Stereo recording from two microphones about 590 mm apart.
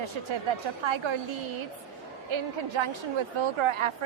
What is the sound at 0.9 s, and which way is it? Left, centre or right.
Speech, right.